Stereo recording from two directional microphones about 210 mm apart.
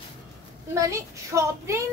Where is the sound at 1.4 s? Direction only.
15° right (ahead or behind).